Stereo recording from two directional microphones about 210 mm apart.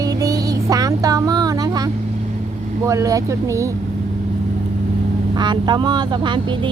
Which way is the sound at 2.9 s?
15° right (ahead or behind).